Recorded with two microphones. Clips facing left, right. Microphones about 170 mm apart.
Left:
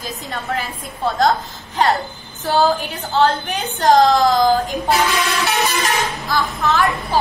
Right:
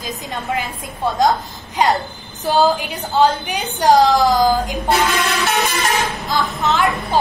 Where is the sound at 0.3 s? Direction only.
15° right (ahead or behind).